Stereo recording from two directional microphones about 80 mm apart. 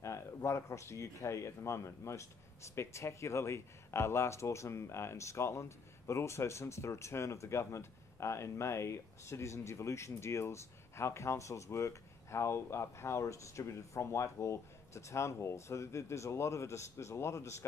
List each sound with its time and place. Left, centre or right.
0.0 s speech: left